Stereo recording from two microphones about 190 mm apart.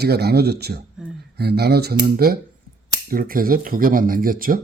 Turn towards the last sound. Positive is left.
turn(degrees=-50)  # may be behind; listen again after turning